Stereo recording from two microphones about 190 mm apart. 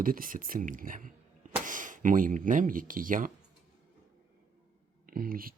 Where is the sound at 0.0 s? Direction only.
45° right (ahead or behind).